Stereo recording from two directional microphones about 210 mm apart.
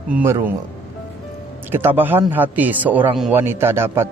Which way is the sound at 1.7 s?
10° right (ahead or behind).